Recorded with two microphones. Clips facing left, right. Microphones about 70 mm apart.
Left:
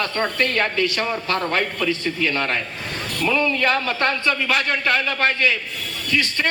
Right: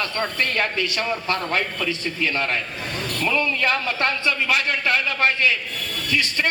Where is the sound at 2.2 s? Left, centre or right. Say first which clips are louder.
Left 1 dB; left.